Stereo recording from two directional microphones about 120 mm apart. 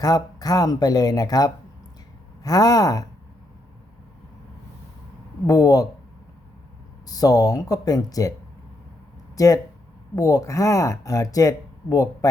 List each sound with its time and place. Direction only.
0.0 s speech: 30° left (ahead or behind)
5.5 s speech: 30° left (ahead or behind)
7.1 s speech: 30° left (ahead or behind)
9.3 s speech: 30° left (ahead or behind)